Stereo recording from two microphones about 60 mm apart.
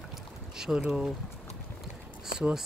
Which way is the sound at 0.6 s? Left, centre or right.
Centre.